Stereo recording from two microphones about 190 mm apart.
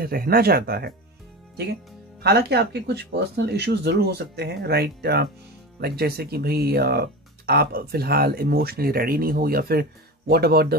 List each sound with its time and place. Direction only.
0.0 s speech: 50° right (ahead or behind)
2.2 s speech: 60° right (ahead or behind)